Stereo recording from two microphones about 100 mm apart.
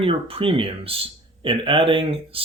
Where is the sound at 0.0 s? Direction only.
70° right (ahead or behind).